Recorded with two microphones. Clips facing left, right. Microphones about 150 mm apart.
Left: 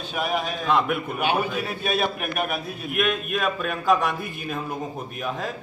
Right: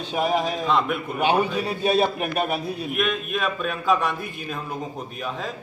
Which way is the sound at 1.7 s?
30° right (ahead or behind).